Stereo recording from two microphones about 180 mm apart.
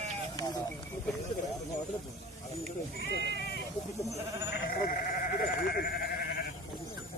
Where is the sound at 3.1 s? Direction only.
70° left (ahead or behind).